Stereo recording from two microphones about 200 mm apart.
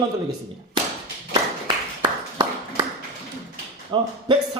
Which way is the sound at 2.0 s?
25° right (ahead or behind).